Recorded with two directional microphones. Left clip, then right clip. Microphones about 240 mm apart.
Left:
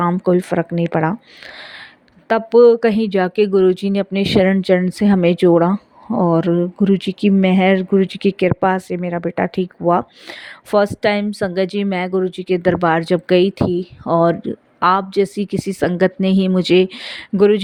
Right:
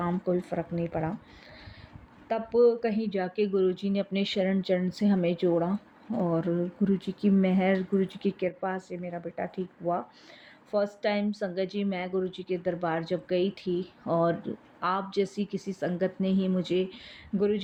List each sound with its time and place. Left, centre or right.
0.0 s speech: left
2.2 s speech: left